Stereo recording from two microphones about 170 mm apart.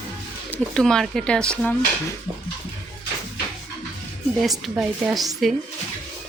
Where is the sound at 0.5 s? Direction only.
5° left (ahead or behind).